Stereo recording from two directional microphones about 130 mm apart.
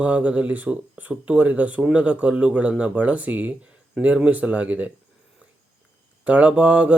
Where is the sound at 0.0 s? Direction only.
10° right (ahead or behind).